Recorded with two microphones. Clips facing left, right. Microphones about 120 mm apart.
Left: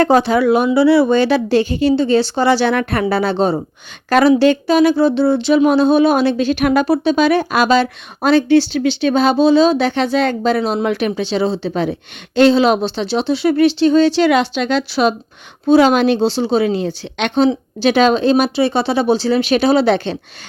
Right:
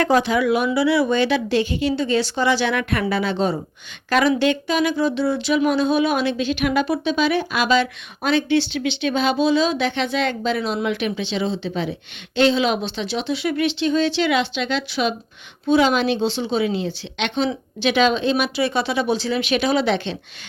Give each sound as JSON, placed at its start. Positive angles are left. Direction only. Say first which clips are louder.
{"t": 0.0, "sound": "speech", "louder": "left 5 dB", "side_deg": 35}